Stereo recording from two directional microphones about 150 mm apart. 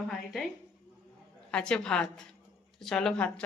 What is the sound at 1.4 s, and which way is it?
A woman's voice, 5° left (ahead or behind).